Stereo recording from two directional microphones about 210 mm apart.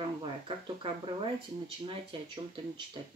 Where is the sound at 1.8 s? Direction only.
25° right (ahead or behind).